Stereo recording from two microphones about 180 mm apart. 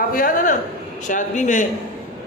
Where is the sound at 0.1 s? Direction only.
50° left (ahead or behind).